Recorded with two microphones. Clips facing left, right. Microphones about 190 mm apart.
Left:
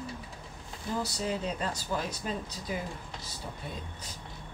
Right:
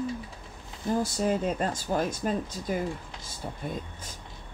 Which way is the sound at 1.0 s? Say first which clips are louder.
Right 6 dB; 50° right (ahead or behind).